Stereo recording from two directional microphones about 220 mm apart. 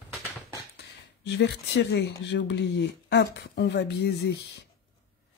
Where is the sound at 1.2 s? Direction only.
50° left (ahead or behind).